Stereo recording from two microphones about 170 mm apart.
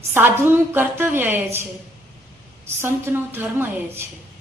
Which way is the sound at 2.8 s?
15° right (ahead or behind).